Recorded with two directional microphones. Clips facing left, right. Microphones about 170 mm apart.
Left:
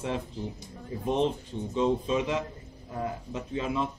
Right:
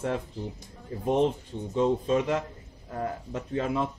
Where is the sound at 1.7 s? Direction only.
50° right (ahead or behind).